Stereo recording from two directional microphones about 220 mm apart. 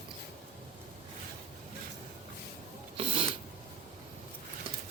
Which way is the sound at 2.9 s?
25° right (ahead or behind).